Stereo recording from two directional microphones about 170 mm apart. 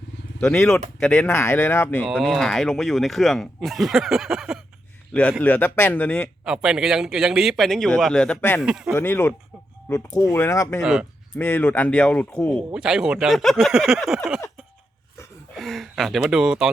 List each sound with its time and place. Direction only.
0.3 s speech: 5° left (ahead or behind)
2.0 s speech: centre (ahead or behind)
5.4 s speech: 10° left (ahead or behind)
6.4 s speech: 5° right (ahead or behind); by 8.6 s 10° left (ahead or behind)
8.6 s speech: 5° right (ahead or behind)
9.0 s speech: 15° left (ahead or behind)
10.3 s speech: 20° left (ahead or behind)
12.7 s speech: 5° right (ahead or behind)
15.5 s speech: centre (ahead or behind)